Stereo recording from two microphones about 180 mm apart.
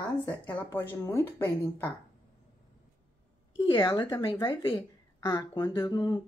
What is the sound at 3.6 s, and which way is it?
Speech, 25° left (ahead or behind).